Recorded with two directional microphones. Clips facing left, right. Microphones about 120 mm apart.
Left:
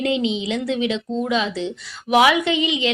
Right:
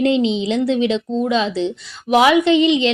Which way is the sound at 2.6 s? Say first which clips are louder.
Right 8 dB; 15° left (ahead or behind).